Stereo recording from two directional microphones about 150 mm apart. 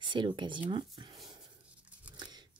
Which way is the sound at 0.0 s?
30° right (ahead or behind).